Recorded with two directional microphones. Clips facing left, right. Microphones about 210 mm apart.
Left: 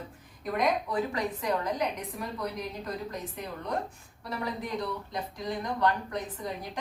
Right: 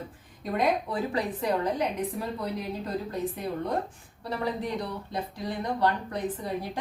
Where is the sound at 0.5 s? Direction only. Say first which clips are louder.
Right 1 dB; 30° right (ahead or behind).